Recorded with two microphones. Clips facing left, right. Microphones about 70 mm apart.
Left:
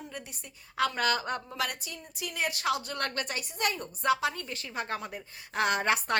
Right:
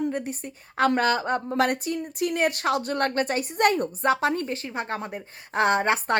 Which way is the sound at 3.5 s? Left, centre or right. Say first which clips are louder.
Right 11 dB; right.